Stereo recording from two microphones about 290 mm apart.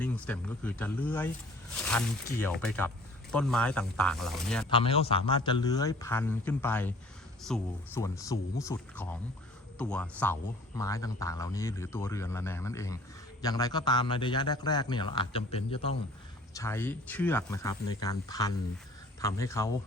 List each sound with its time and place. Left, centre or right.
0.0 s speech: centre
4.8 s a man's voice: centre
16.6 s a man's voice: centre